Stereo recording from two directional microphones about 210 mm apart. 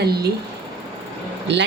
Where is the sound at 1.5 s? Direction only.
55° right (ahead or behind).